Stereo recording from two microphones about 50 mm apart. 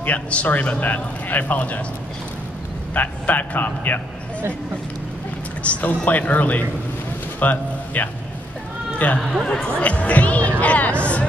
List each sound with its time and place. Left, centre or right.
0.0 s a man's voice: left
2.9 s a man's voice: left
5.6 s a man's voice: left